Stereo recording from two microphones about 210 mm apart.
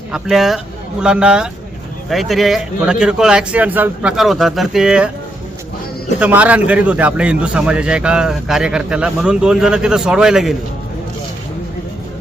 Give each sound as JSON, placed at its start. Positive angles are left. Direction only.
{"t": 0.1, "sound": "a man's voice", "side_deg": 0}
{"t": 6.1, "sound": "a man's voice", "side_deg": -5}